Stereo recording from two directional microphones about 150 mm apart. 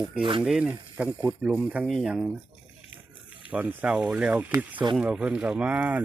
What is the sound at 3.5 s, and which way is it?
Speech, 10° right (ahead or behind).